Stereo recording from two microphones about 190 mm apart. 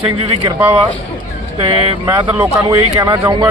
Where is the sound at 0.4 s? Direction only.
15° right (ahead or behind).